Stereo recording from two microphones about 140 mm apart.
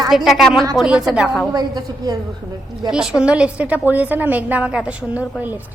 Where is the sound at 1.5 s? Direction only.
30° right (ahead or behind).